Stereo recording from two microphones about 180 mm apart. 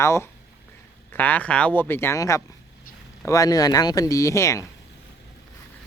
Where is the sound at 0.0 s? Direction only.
15° left (ahead or behind).